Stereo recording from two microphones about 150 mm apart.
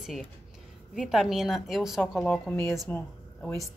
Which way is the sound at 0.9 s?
Centre (ahead or behind).